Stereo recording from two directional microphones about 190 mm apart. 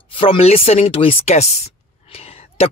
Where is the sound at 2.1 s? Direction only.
30° left (ahead or behind).